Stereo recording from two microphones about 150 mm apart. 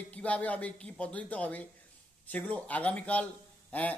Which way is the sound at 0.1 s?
10° left (ahead or behind).